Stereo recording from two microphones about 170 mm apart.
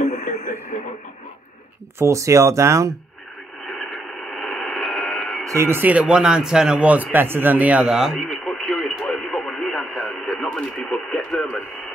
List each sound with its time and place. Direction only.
0.0 s radio: 45° left (ahead or behind)
2.0 s speech: 15° right (ahead or behind)
3.6 s radio: centre (ahead or behind)
5.4 s speech: 15° right (ahead or behind); by 11.6 s centre (ahead or behind)